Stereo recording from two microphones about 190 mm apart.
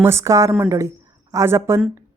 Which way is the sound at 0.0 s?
15° right (ahead or behind).